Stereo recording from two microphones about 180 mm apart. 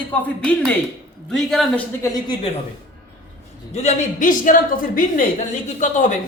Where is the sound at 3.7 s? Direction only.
40° left (ahead or behind).